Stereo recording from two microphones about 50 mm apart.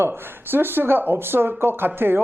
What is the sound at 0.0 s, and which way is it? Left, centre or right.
Speech, right.